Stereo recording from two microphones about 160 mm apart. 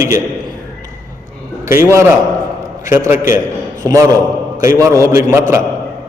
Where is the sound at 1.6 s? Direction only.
20° right (ahead or behind).